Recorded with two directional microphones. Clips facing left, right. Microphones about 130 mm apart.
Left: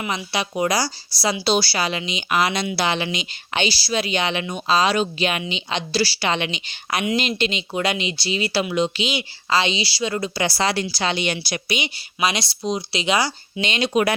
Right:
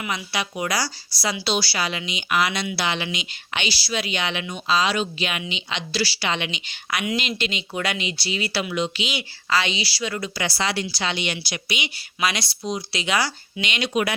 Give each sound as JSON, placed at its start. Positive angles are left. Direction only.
{"t": 0.0, "sound": "speech", "side_deg": 25}
{"t": 11.9, "sound": "speech", "side_deg": 25}
{"t": 13.6, "sound": "speech", "side_deg": 30}